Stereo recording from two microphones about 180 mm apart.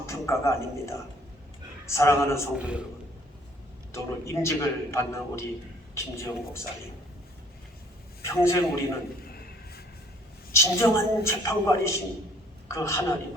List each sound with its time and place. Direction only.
0.0 s a man's voice: 15° left (ahead or behind)
2.6 s a man's voice: 5° right (ahead or behind)
3.9 s a man's voice: 15° left (ahead or behind)
8.2 s a man's voice: 15° left (ahead or behind)
9.2 s a sound: 60° left (ahead or behind)
10.5 s a man's voice: 15° left (ahead or behind)